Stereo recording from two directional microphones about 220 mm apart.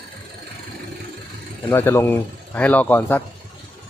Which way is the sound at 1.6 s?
10° left (ahead or behind).